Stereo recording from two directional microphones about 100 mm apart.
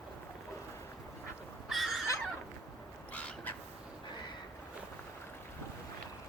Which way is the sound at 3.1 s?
15° left (ahead or behind).